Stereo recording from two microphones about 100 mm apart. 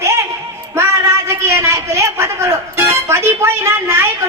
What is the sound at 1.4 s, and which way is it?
Speech, 30° right (ahead or behind).